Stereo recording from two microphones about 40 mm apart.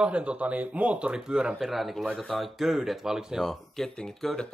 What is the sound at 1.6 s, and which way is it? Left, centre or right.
Speech, centre.